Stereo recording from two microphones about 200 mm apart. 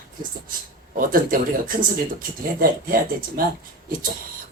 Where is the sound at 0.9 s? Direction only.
45° right (ahead or behind).